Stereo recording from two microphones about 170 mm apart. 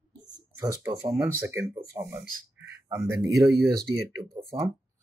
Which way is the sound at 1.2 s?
15° right (ahead or behind).